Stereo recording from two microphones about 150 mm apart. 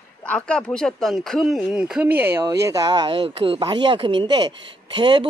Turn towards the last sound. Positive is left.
turn(degrees=-30)  # may be behind; listen again after turning